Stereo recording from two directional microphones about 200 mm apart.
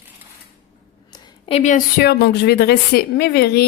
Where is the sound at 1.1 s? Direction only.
30° left (ahead or behind).